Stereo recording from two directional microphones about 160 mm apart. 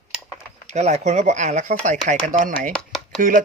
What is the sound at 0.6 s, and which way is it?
Speech, 45° right (ahead or behind).